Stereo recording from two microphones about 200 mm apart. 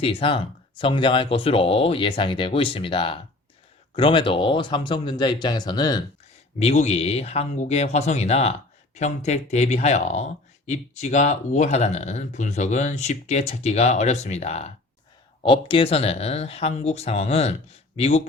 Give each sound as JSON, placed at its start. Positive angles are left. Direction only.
{"t": 0.0, "sound": "speech", "side_deg": 30}
{"t": 6.6, "sound": "speech", "side_deg": 30}